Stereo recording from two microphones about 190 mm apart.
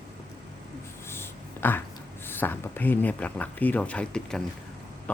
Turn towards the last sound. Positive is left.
turn(degrees=5)  # may be behind; listen again after turning